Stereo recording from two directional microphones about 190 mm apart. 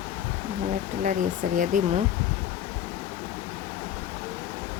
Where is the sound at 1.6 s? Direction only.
45° right (ahead or behind).